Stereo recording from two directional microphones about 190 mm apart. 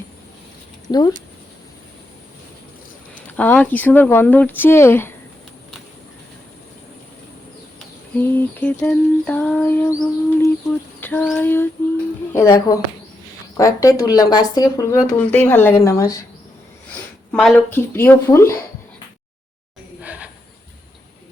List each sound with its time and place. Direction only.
0.9 s speech: 20° left (ahead or behind)
3.2 s speech: 10° left (ahead or behind)
8.1 s speech: 10° left (ahead or behind)
17.3 s speech: 5° left (ahead or behind)
20.0 s a sound: 5° right (ahead or behind)